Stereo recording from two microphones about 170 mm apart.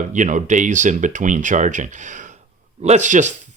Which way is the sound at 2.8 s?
45° right (ahead or behind).